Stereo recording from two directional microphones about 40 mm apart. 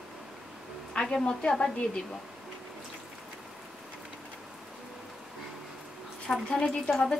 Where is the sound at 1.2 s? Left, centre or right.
Centre.